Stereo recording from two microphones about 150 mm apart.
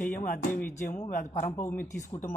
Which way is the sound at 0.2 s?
75° left (ahead or behind).